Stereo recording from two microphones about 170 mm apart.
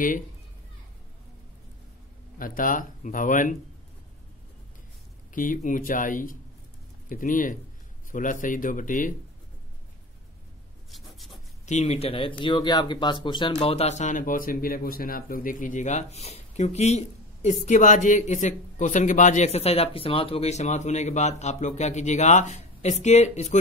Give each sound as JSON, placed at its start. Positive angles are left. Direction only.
{"t": 2.3, "sound": "speech", "side_deg": 55}
{"t": 5.3, "sound": "speech", "side_deg": 50}
{"t": 10.9, "sound": "rub", "side_deg": 0}
{"t": 11.6, "sound": "speech", "side_deg": 40}